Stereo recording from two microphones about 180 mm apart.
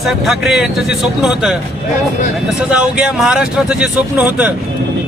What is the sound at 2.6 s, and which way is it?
Speech, 5° right (ahead or behind).